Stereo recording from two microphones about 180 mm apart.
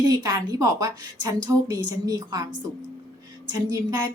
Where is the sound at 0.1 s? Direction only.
20° right (ahead or behind).